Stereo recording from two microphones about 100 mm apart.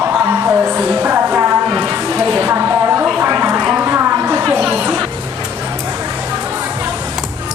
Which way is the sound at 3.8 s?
20° right (ahead or behind).